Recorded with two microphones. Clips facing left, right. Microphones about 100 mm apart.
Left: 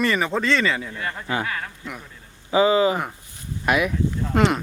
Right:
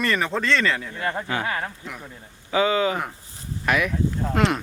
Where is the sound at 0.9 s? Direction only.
30° right (ahead or behind).